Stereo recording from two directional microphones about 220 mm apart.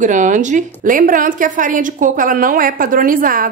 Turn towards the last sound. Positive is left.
turn(degrees=-40)  # may be behind; listen again after turning